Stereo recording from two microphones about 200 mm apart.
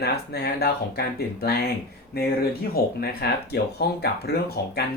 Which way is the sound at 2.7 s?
50° left (ahead or behind).